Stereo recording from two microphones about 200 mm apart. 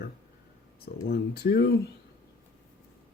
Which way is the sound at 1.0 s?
50° left (ahead or behind).